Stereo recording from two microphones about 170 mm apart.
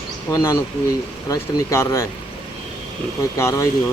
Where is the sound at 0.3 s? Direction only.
15° left (ahead or behind).